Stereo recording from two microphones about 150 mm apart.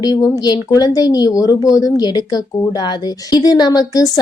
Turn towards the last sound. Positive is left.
turn(degrees=25)  # may be behind; listen again after turning